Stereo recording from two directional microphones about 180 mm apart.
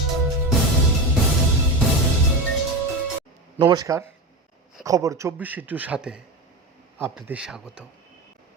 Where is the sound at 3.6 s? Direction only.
20° right (ahead or behind); by 7.9 s 5° right (ahead or behind).